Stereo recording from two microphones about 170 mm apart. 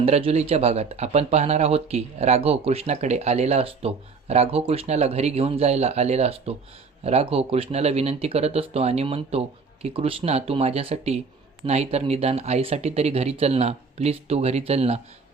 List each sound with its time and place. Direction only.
0.0 s speech: 35° right (ahead or behind)